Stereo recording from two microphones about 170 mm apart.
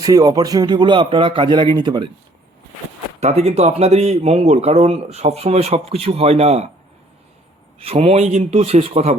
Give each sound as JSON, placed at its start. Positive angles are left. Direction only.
{"t": 0.0, "sound": "speech", "side_deg": -20}
{"t": 3.2, "sound": "speech", "side_deg": -40}
{"t": 7.8, "sound": "speech", "side_deg": -35}